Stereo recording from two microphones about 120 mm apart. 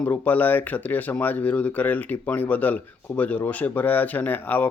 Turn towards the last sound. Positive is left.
turn(degrees=15)  # may be behind; listen again after turning